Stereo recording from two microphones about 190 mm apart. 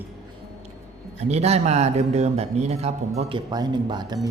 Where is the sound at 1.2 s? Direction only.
35° right (ahead or behind).